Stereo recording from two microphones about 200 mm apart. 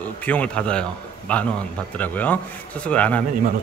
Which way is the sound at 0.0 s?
5° left (ahead or behind).